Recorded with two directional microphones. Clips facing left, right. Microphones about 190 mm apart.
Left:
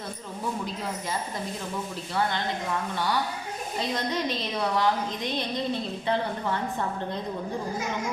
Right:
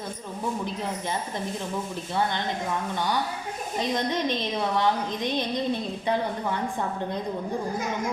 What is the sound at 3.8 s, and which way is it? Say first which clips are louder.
A woman's voice: right 3 dB; 20° right (ahead or behind).